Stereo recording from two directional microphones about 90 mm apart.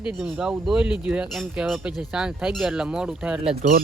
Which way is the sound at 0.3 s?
10° right (ahead or behind).